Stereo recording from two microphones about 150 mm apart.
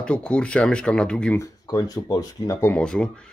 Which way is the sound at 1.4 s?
25° left (ahead or behind).